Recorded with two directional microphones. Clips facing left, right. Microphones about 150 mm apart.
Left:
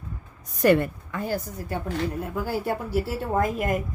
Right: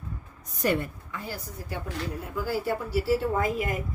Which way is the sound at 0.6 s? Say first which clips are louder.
Left 7 dB; 65° left (ahead or behind).